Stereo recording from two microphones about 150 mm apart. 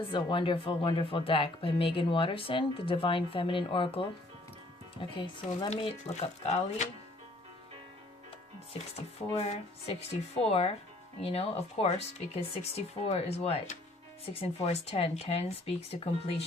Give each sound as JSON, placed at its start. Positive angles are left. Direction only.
{"t": 0.1, "sound": "speech", "side_deg": 35}
{"t": 5.7, "sound": "speech", "side_deg": 45}
{"t": 9.3, "sound": "speech", "side_deg": 40}